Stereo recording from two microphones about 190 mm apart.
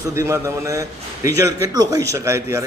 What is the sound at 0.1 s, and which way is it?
A man's voice, 15° right (ahead or behind).